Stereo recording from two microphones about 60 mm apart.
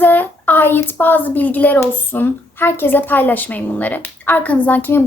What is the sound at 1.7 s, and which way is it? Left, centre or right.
A woman's voice, left.